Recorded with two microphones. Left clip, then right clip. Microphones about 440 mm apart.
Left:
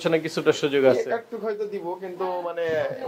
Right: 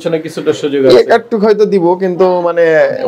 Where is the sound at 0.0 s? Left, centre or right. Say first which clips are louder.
Right 7 dB; left.